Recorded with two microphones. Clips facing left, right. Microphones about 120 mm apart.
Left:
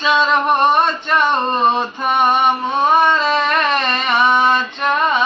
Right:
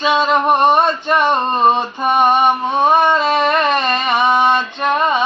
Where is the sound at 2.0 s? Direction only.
20° right (ahead or behind).